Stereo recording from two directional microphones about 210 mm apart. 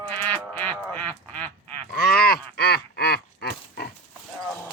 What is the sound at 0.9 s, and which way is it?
Duck, 5° left (ahead or behind).